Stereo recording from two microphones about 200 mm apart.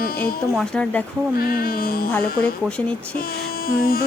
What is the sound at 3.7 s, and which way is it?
Carnatic music, 50° left (ahead or behind).